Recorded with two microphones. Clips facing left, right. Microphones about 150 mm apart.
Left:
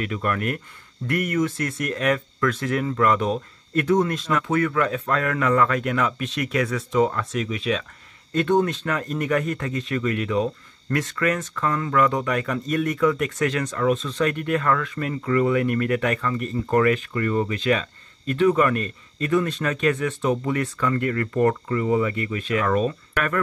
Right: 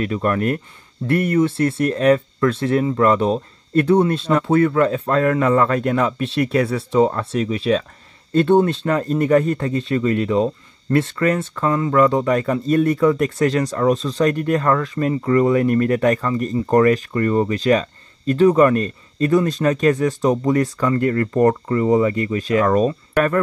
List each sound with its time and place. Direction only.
0.0 s speech: 35° right (ahead or behind)